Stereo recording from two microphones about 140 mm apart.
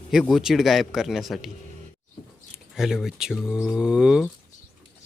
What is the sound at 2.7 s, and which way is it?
Speech, centre (ahead or behind).